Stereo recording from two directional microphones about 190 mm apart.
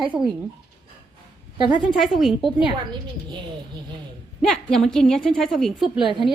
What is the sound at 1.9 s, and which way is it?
Speech, centre (ahead or behind).